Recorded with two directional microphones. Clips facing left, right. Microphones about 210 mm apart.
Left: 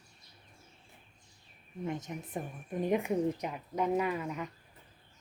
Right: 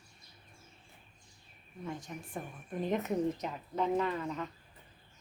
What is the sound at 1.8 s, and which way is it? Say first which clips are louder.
A woman's voice: left 4 dB; 20° left (ahead or behind).